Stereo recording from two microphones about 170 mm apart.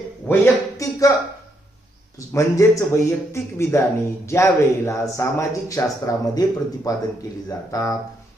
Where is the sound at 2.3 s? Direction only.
20° left (ahead or behind).